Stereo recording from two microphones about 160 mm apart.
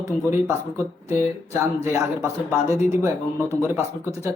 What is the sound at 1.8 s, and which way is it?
Speech, 20° right (ahead or behind).